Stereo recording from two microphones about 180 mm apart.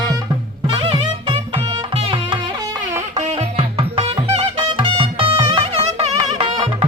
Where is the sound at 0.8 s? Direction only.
30° right (ahead or behind).